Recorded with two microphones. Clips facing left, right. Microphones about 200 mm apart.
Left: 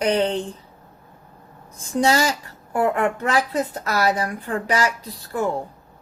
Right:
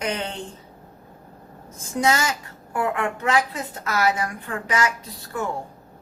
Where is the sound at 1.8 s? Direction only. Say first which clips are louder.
Left 3 dB; 30° left (ahead or behind).